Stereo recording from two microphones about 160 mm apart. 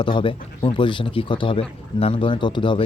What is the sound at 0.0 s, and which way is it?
Speech, 30° left (ahead or behind).